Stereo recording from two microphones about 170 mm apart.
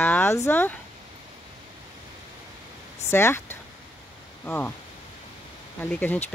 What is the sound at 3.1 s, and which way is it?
Speech, 15° left (ahead or behind).